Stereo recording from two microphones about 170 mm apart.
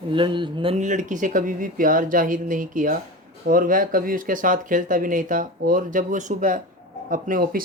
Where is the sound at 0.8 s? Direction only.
45° right (ahead or behind).